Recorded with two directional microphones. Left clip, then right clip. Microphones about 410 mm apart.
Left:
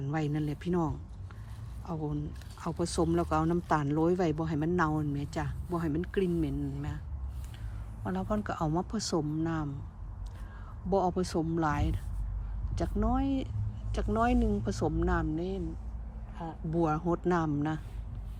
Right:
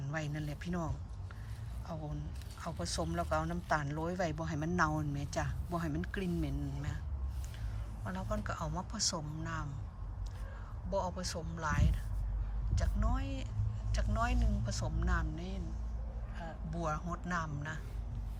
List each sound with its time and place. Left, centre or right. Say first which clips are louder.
0.0 s speech: left 7 dB; centre
2.8 s speech: left 8 dB; centre
8.0 s speech: left 6 dB; centre
10.9 s speech: left 8 dB; centre